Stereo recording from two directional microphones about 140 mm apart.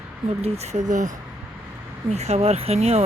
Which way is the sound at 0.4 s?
50° right (ahead or behind).